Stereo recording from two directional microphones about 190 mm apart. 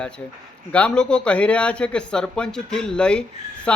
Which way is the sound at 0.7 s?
5° left (ahead or behind).